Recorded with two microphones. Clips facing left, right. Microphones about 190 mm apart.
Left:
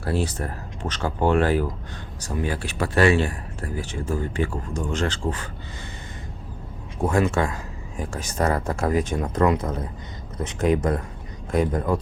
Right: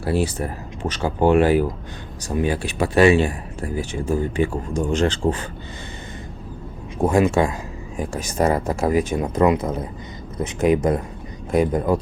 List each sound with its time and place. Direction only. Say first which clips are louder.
0.0 s speech: right 4 dB; 10° right (ahead or behind)
7.0 s speech: right 4 dB; 15° right (ahead or behind)